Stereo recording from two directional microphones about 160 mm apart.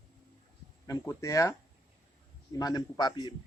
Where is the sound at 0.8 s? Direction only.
20° left (ahead or behind).